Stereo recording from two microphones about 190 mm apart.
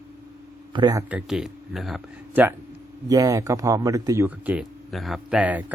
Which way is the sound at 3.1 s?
15° right (ahead or behind).